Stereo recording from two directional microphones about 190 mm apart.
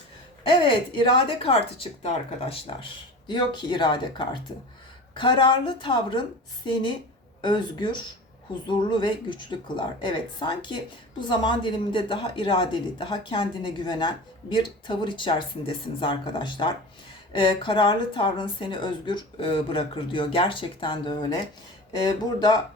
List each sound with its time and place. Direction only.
0.6 s a woman's voice: 25° left (ahead or behind)
7.4 s a woman's voice: 25° left (ahead or behind)